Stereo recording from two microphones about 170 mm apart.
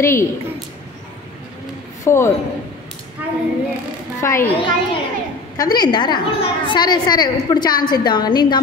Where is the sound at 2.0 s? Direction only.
15° left (ahead or behind).